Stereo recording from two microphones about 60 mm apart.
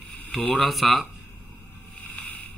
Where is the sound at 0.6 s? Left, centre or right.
Centre.